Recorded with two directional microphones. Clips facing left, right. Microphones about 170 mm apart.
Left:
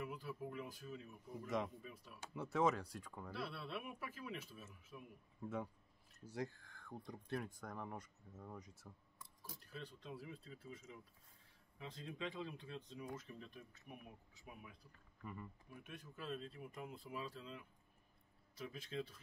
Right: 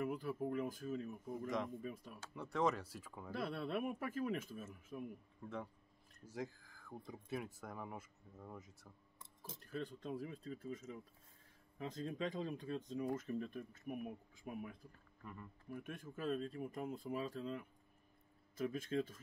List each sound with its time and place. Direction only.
0.0 s speech: 50° right (ahead or behind)
2.3 s speech: centre (ahead or behind)
3.3 s speech: 45° right (ahead or behind)
5.4 s speech: 5° left (ahead or behind)
9.6 s speech: 50° right (ahead or behind)
15.2 s speech: 5° left (ahead or behind)
15.7 s speech: 50° right (ahead or behind)